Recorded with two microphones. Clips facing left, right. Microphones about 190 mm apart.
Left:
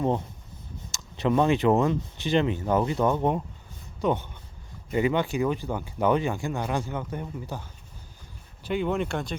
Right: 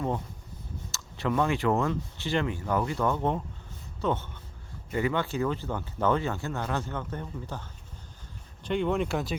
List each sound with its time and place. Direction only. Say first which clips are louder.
0.9 s speech: left 5 dB; 15° left (ahead or behind); by 9.3 s 5° right (ahead or behind)